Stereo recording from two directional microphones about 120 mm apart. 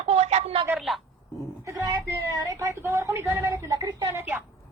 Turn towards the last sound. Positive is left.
turn(degrees=-30)  # may be behind; listen again after turning